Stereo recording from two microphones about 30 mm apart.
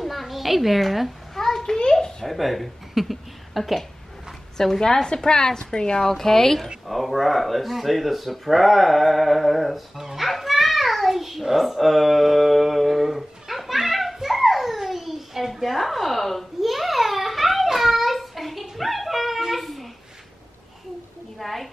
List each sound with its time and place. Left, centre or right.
0.0 s a sound: centre
1.3 s a sound: centre
2.2 s speech: centre
4.6 s a woman's voice: centre
6.9 s speech: centre
9.9 s a child's voice: centre
10.2 s child singing: centre
14.1 s a sound: centre
21.4 s a woman's voice: centre